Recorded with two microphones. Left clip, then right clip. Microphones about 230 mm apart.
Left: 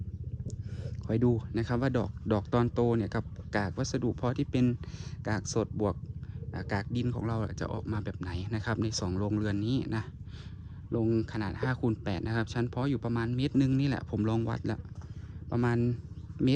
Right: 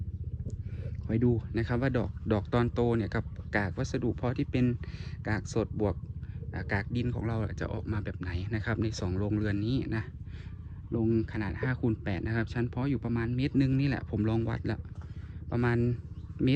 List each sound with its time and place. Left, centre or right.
0.8 s a sound: left
1.4 s speech: centre
10.9 s speech: left